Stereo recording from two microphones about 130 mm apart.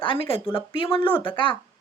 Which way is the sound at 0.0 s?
45° left (ahead or behind).